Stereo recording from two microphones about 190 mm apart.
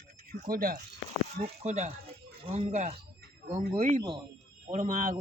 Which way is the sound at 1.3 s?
35° right (ahead or behind).